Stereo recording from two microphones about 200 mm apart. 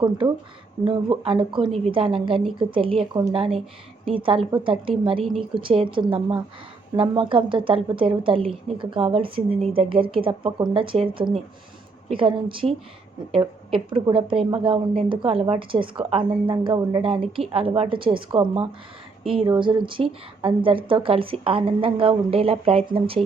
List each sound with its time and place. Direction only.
0.9 s a woman's voice: 25° right (ahead or behind)